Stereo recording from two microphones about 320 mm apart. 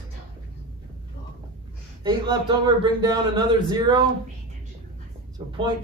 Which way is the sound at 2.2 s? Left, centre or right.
Centre.